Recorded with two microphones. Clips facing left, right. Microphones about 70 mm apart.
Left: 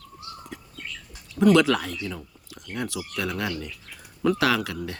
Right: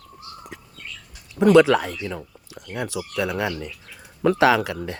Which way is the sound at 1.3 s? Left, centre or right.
Right.